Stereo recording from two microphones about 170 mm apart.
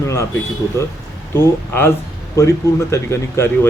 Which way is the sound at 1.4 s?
15° left (ahead or behind).